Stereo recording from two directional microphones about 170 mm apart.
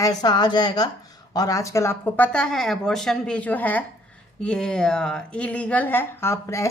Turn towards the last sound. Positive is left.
turn(degrees=15)  # may be behind; listen again after turning